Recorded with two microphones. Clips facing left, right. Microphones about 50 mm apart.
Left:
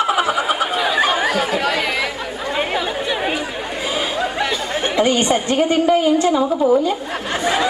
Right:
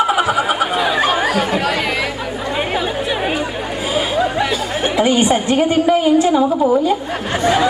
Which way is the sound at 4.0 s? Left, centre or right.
Centre.